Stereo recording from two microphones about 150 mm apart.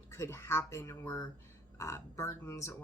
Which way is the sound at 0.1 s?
15° left (ahead or behind).